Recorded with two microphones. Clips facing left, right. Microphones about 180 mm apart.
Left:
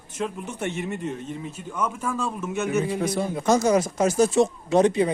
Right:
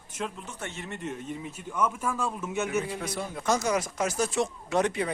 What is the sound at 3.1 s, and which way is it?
Speech, 30° left (ahead or behind).